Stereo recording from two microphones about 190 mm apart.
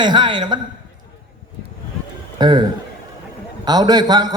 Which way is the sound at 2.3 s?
20° right (ahead or behind).